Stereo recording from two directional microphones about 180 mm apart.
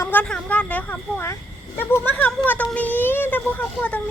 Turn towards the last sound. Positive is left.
turn(degrees=10)  # may be behind; listen again after turning